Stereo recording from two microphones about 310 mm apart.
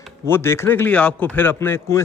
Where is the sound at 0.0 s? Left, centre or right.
Centre.